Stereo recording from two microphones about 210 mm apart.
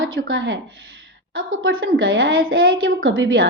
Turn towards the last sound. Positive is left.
turn(degrees=-70)  # may be behind; listen again after turning